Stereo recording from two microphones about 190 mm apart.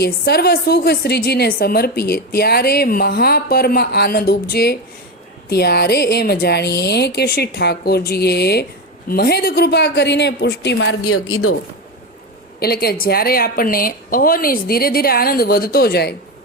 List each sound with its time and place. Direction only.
0.0 s a woman's voice: 55° left (ahead or behind); by 11.4 s 85° left
12.5 s speech: 55° left (ahead or behind)